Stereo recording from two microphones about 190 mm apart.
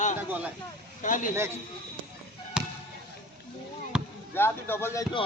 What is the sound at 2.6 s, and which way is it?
Basketball bounce, 5° right (ahead or behind).